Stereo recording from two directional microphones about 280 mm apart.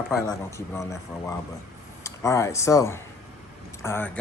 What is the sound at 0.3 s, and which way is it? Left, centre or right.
Speech, centre.